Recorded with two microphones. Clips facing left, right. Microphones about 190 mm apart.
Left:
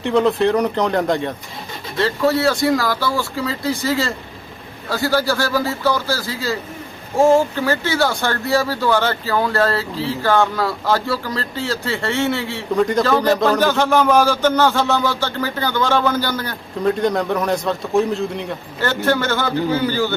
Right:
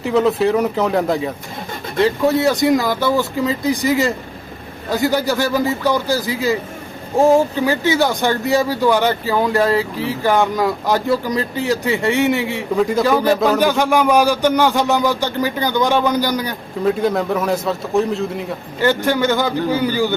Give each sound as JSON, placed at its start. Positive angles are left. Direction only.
{"t": 0.0, "sound": "a man's voice", "side_deg": -5}
{"t": 2.0, "sound": "speech", "side_deg": -15}
{"t": 12.7, "sound": "speech", "side_deg": -5}
{"t": 16.8, "sound": "a man's voice", "side_deg": -5}
{"t": 18.8, "sound": "speech", "side_deg": -15}